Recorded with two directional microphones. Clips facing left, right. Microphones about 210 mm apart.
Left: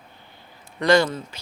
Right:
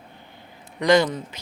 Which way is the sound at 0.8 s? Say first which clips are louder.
Even; 20° right (ahead or behind).